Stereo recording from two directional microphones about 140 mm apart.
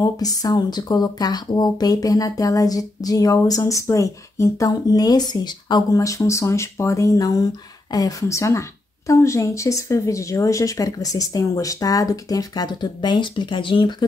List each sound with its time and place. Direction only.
0.0 s speech: 25° left (ahead or behind)